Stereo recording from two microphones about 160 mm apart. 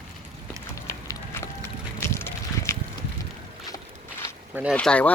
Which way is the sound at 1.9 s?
15° left (ahead or behind).